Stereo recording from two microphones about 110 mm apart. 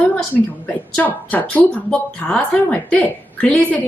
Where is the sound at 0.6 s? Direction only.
15° left (ahead or behind).